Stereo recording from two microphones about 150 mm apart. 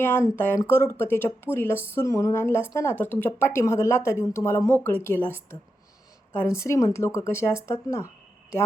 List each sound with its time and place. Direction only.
0.0 s a woman's voice: 15° left (ahead or behind)